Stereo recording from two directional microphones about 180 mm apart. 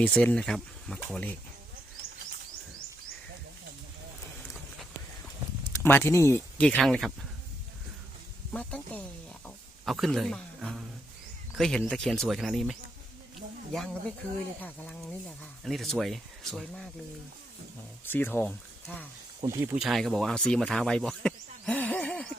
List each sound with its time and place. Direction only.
0.0 s speech: 5° left (ahead or behind)
5.6 s speech: 15° left (ahead or behind)
8.5 s speech: 5° left (ahead or behind)
14.6 s speech: 10° left (ahead or behind)
18.0 s speech: 10° left (ahead or behind)
19.4 s speech: 20° right (ahead or behind)
19.7 s speech: centre (ahead or behind)